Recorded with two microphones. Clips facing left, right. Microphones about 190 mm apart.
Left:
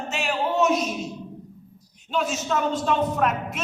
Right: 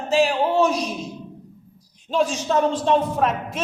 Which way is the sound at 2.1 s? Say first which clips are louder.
Right 5 dB; 30° right (ahead or behind).